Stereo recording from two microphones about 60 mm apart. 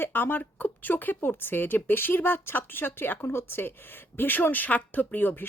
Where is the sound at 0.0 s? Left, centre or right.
Left.